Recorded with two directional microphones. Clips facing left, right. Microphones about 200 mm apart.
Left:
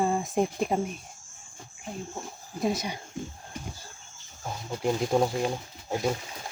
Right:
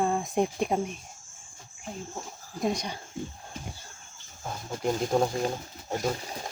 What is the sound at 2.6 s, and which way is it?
Speech, 5° left (ahead or behind).